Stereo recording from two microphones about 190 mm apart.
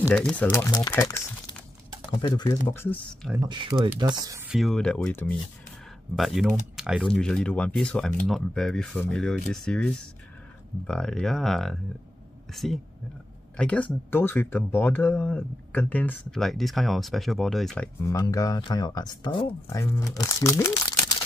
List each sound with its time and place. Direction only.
0.1 s speech: 5° left (ahead or behind)
2.0 s speech: 25° left (ahead or behind)
3.4 s speech: 25° right (ahead or behind)
4.5 s speech: centre (ahead or behind)
18.0 s speech: 15° left (ahead or behind)